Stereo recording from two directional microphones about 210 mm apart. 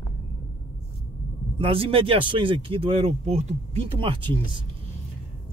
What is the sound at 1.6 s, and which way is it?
Speech, 25° right (ahead or behind).